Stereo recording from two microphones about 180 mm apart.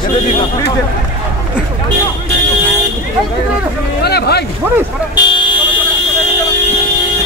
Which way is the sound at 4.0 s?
65° left (ahead or behind).